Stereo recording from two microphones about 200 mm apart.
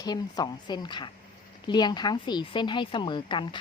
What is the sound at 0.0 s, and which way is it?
A woman's voice, 20° left (ahead or behind).